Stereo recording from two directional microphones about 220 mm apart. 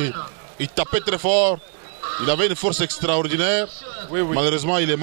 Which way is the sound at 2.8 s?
15° right (ahead or behind).